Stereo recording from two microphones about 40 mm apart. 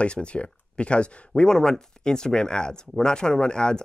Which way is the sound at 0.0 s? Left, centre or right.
Left.